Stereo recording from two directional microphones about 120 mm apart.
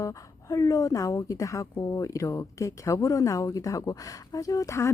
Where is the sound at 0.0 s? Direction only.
30° left (ahead or behind).